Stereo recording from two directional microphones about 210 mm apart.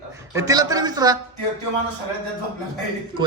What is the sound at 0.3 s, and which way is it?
Speech, 15° right (ahead or behind).